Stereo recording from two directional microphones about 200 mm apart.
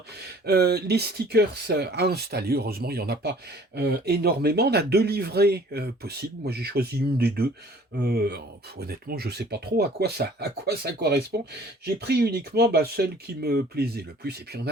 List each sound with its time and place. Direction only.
0.4 s speech: 50° right (ahead or behind)